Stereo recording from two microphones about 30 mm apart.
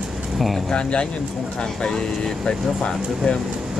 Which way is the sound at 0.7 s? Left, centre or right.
Left.